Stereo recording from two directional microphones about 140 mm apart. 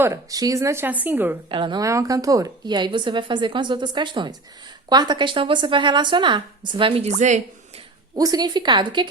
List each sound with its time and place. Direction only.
0.0 s speech: 25° right (ahead or behind)
1.5 s a woman's voice: 35° right (ahead or behind)
1.8 s a woman's voice: 25° right (ahead or behind); by 7.4 s 55° right (ahead or behind)
8.1 s a woman's voice: 25° right (ahead or behind)